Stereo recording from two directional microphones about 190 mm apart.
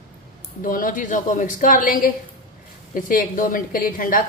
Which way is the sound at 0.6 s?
45° left (ahead or behind).